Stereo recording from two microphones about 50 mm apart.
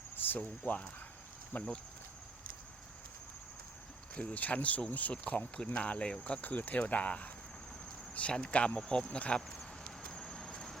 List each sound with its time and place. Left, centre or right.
0.2 s speech: left
4.1 s speech: left
6.4 s speech: left
10.2 s a sound: centre